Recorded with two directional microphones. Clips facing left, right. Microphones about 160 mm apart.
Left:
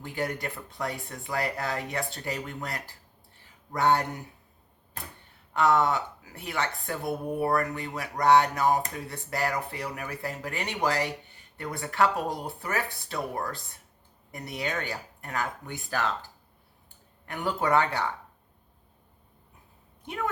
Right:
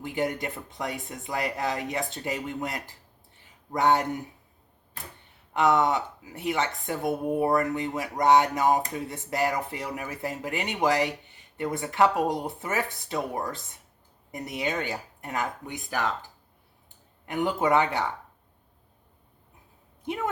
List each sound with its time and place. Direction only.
0.0 s speech: 20° right (ahead or behind)
5.5 s speech: 20° right (ahead or behind)
17.2 s speech: 20° right (ahead or behind)